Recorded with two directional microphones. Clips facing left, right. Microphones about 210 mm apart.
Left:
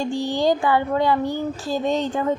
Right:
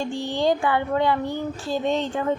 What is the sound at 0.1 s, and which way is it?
A woman's voice, 40° left (ahead or behind).